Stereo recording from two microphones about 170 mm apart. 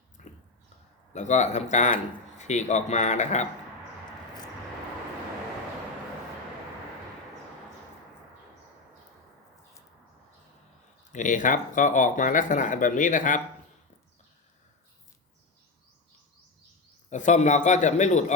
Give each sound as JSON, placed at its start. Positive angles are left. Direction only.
{"t": 0.2, "sound": "a sound", "side_deg": 45}
{"t": 1.1, "sound": "speech", "side_deg": 45}
{"t": 11.1, "sound": "speech", "side_deg": 45}
{"t": 17.1, "sound": "speech", "side_deg": 45}